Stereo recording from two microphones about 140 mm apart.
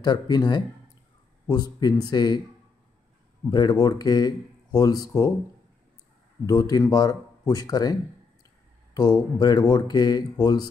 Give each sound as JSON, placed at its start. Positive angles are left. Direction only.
{"t": 0.0, "sound": "speech", "side_deg": 30}
{"t": 3.4, "sound": "speech", "side_deg": 30}
{"t": 6.4, "sound": "speech", "side_deg": 25}